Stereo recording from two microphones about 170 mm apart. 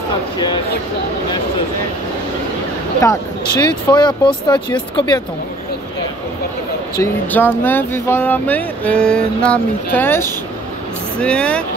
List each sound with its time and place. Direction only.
3.0 s speech: 20° left (ahead or behind)
7.0 s speech: 10° left (ahead or behind)